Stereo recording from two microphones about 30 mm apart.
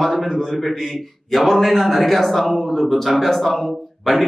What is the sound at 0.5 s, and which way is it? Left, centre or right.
A man's voice, centre.